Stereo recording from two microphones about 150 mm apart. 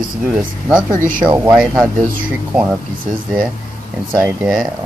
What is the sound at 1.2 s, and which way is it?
Speech, 10° right (ahead or behind).